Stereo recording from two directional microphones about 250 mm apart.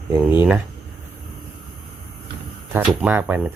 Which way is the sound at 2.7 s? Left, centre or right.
Centre.